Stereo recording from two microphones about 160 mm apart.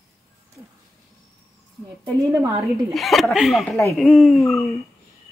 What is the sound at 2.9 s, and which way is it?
Speech, centre (ahead or behind).